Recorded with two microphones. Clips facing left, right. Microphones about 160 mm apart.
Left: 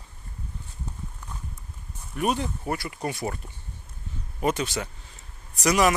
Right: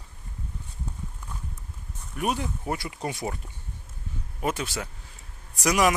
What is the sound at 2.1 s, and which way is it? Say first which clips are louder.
Speech: left 2 dB; 10° right (ahead or behind).